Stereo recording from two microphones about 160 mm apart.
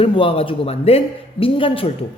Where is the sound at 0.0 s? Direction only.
35° left (ahead or behind).